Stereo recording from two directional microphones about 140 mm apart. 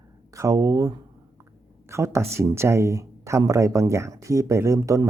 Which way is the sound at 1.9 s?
20° right (ahead or behind).